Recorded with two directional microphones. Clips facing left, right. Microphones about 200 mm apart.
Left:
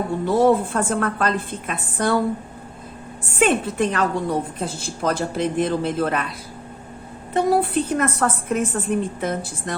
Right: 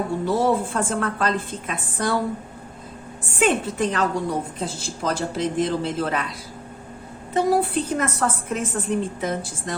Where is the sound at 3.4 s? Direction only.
55° left (ahead or behind).